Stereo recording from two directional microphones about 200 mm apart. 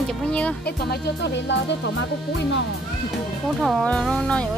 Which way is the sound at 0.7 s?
55° left (ahead or behind).